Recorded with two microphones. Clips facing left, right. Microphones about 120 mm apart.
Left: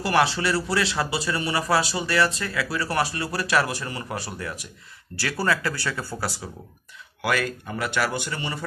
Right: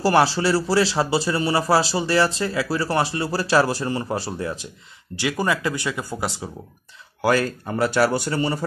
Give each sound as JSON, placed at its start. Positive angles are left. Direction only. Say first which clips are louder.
{"t": 0.0, "sound": "speech", "louder": "right 4 dB", "side_deg": -35}
{"t": 7.2, "sound": "speech", "louder": "right 5 dB", "side_deg": -35}